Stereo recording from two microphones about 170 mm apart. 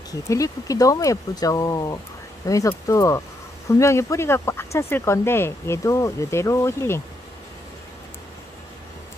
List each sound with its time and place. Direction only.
0.1 s speech: 20° left (ahead or behind)